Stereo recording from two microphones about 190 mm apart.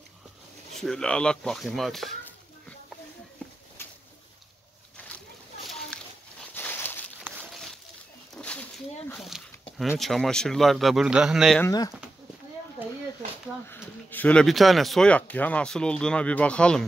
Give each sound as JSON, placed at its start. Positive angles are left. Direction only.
{"t": 0.7, "sound": "speech", "side_deg": 5}
{"t": 4.9, "sound": "splash", "side_deg": 5}
{"t": 6.5, "sound": "a sound", "side_deg": 10}
{"t": 8.4, "sound": "a sound", "side_deg": 5}
{"t": 9.8, "sound": "speech", "side_deg": 0}
{"t": 11.6, "sound": "speech", "side_deg": 20}
{"t": 13.7, "sound": "speech", "side_deg": 10}